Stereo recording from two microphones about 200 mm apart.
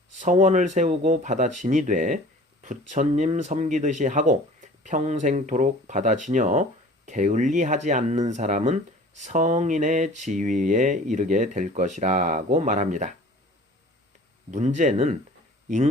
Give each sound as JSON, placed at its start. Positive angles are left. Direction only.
{"t": 0.2, "sound": "speech", "side_deg": -40}
{"t": 14.5, "sound": "speech", "side_deg": -35}